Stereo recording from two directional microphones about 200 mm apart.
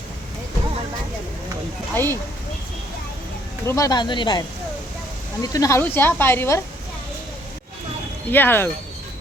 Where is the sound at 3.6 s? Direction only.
15° left (ahead or behind).